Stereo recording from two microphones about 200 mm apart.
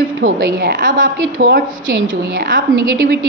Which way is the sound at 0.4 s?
50° right (ahead or behind).